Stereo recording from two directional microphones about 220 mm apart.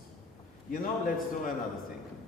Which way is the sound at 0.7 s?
40° left (ahead or behind).